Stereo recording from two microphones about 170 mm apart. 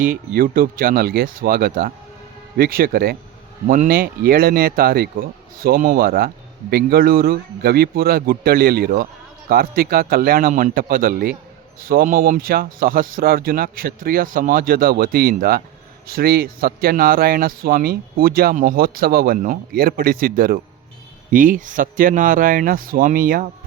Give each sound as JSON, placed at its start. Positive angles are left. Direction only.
{"t": 0.0, "sound": "speech", "side_deg": -60}